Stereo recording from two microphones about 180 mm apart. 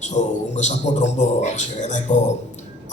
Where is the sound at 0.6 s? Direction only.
40° left (ahead or behind).